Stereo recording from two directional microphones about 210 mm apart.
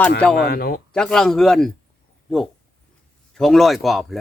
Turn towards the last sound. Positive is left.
turn(degrees=0)  # may be behind; listen again after turning